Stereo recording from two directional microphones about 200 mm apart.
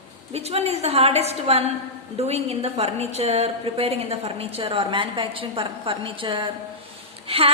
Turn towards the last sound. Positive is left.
turn(degrees=-30)  # may be behind; listen again after turning